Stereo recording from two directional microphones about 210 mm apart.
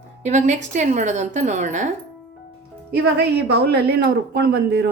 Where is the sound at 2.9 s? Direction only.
50° right (ahead or behind).